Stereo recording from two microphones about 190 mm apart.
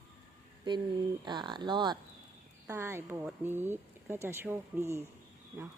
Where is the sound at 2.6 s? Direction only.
15° right (ahead or behind).